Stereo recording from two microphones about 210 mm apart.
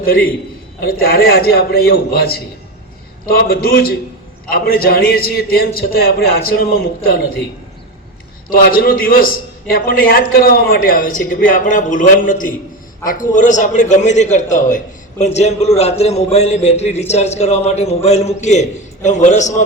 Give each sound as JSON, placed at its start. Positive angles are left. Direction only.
{"t": 0.0, "sound": "a man's voice", "side_deg": 45}
{"t": 8.4, "sound": "a man's voice", "side_deg": 45}